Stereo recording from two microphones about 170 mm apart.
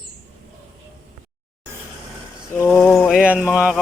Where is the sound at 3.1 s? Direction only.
5° right (ahead or behind).